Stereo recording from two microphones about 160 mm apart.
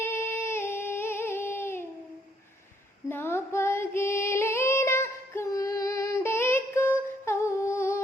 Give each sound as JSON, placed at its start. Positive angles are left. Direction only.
{"t": 0.0, "sound": "a sound", "side_deg": 15}
{"t": 3.1, "sound": "music", "side_deg": 15}
{"t": 7.1, "sound": "humming", "side_deg": 15}